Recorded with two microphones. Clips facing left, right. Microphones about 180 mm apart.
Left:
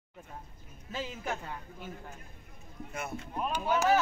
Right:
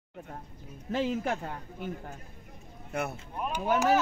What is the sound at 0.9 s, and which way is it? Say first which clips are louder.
Speech: right 7 dB; 60° right (ahead or behind).